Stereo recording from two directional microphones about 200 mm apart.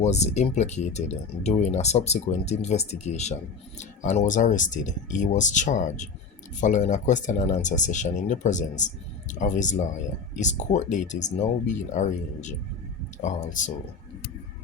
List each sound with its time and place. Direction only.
0.0 s speech: 35° left (ahead or behind)